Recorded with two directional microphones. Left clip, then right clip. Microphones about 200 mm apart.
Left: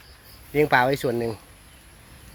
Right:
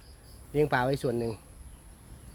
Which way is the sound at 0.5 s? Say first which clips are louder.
Left 7 dB; 30° left (ahead or behind).